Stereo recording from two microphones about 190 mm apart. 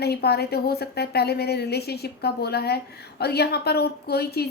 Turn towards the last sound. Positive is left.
turn(degrees=55)  # may be behind; listen again after turning